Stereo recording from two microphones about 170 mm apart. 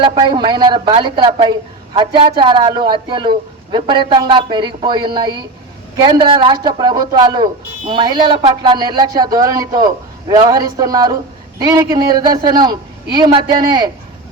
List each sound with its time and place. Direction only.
0.0 s a woman's voice: 30° right (ahead or behind)